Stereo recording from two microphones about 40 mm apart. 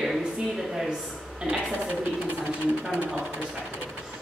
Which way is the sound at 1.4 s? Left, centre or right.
Centre.